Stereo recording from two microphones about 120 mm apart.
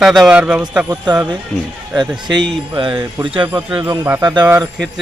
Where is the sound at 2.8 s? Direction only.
40° right (ahead or behind).